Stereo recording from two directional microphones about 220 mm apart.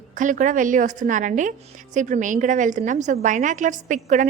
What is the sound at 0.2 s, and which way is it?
A woman's voice, 35° right (ahead or behind).